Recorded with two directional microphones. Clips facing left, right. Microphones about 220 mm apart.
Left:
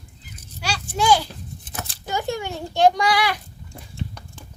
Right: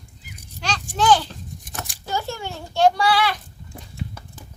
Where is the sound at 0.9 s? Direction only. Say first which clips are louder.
Right 1 dB; 10° left (ahead or behind).